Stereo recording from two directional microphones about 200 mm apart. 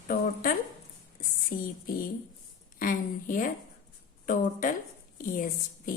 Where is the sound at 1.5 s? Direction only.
45° left (ahead or behind).